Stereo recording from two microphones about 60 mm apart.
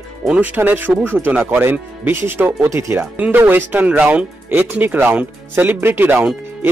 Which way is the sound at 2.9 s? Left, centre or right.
Right.